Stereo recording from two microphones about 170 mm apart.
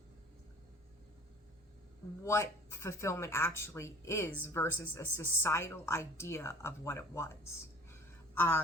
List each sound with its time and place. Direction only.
2.2 s a woman's voice: 15° left (ahead or behind)